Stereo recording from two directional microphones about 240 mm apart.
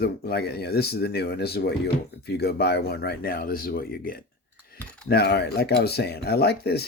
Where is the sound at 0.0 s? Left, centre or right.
Left.